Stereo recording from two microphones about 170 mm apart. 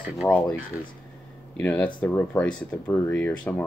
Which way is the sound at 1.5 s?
10° left (ahead or behind).